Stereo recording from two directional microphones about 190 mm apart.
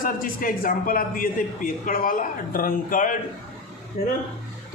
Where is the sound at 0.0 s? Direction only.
50° left (ahead or behind).